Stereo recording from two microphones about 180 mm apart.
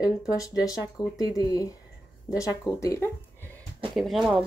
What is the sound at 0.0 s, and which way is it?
Speech, 20° left (ahead or behind).